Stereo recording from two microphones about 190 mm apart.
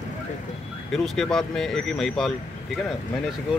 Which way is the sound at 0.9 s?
Centre (ahead or behind).